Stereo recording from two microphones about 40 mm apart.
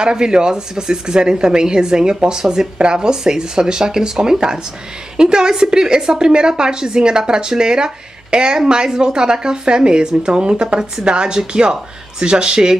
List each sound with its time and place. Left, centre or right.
0.0 s a woman's voice: centre